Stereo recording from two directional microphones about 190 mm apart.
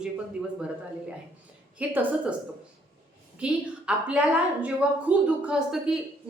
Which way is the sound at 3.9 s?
5° right (ahead or behind).